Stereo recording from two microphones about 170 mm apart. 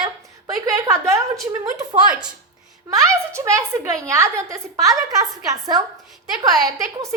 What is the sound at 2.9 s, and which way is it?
A woman's voice, 20° right (ahead or behind).